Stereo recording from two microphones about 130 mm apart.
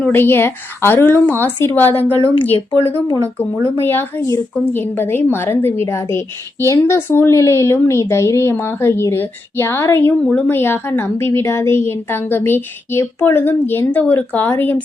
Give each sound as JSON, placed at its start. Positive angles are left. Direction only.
{"t": 0.0, "sound": "a woman's voice", "side_deg": 15}
{"t": 2.1, "sound": "speech", "side_deg": 40}
{"t": 3.8, "sound": "a woman's voice", "side_deg": 15}